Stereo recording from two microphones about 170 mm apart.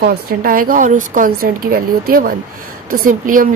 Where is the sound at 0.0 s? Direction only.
60° right (ahead or behind).